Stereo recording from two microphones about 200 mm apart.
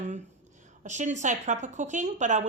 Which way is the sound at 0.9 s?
35° right (ahead or behind).